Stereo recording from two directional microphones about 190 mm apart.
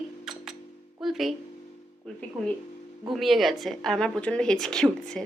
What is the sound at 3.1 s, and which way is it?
A woman's voice, centre (ahead or behind).